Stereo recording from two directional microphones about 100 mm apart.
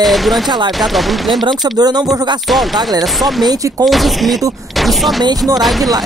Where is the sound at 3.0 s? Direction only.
Centre (ahead or behind).